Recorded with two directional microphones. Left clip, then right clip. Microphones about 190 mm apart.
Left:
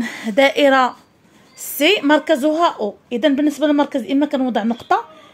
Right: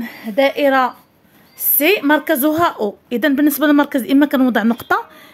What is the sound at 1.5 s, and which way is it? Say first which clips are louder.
A woman's voice: even; centre (ahead or behind).